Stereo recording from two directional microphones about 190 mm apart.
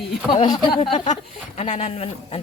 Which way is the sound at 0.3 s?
35° left (ahead or behind).